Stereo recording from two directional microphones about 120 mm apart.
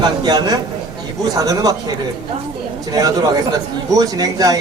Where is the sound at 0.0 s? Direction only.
35° right (ahead or behind).